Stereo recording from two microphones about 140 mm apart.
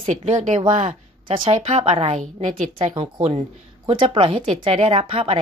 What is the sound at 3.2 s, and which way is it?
Speech, 50° right (ahead or behind).